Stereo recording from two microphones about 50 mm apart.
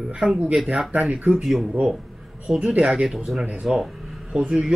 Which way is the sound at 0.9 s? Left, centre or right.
Right.